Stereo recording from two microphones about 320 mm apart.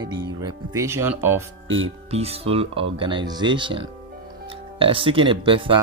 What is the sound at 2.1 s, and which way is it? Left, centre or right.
Speech, centre.